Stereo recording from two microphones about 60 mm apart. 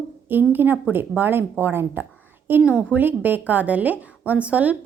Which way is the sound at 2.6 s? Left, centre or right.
Right.